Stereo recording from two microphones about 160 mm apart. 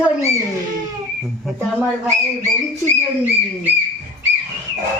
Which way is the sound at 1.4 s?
10° left (ahead or behind).